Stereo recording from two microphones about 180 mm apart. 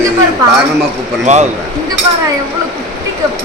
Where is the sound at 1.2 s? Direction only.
40° right (ahead or behind).